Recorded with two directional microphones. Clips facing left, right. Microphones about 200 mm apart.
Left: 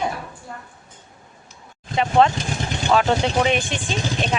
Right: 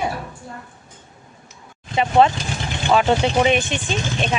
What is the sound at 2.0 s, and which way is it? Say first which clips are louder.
Speech: right 1 dB; 5° right (ahead or behind).